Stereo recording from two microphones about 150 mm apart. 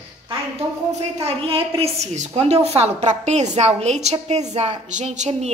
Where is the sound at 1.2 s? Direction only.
40° right (ahead or behind).